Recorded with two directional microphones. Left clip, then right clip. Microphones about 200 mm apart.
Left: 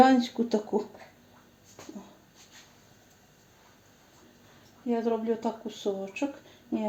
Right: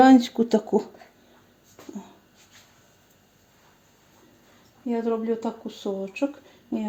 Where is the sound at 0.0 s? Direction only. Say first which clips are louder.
Right 5 dB; 50° right (ahead or behind).